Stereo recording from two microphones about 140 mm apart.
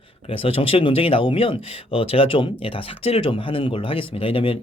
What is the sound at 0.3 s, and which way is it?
Speech, 40° left (ahead or behind).